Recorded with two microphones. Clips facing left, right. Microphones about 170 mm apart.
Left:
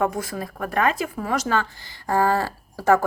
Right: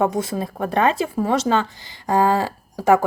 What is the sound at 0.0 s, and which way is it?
Speech, 25° right (ahead or behind).